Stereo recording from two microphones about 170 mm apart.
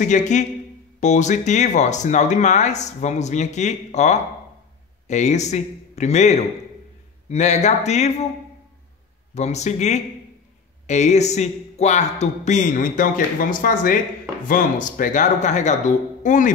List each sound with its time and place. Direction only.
0.0 s a man's voice: 45° left (ahead or behind)
9.3 s a man's voice: 40° left (ahead or behind)